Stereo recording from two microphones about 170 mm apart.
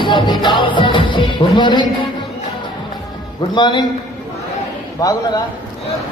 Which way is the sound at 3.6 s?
25° left (ahead or behind).